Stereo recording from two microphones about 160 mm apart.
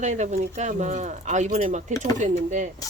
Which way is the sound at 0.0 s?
45° right (ahead or behind).